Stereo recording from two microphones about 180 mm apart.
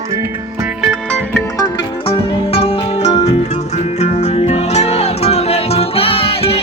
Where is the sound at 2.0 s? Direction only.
35° left (ahead or behind).